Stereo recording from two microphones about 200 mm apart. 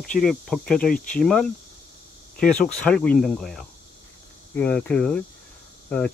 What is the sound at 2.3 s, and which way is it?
Speech, 45° left (ahead or behind).